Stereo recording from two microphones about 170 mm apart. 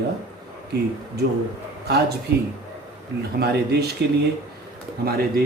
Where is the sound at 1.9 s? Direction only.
70° right (ahead or behind).